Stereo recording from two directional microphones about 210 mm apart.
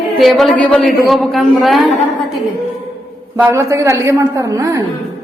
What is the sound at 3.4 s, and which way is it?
A woman's voice, 10° right (ahead or behind).